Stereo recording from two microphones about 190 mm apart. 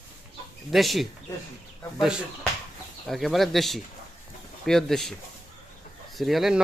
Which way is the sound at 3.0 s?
Centre (ahead or behind).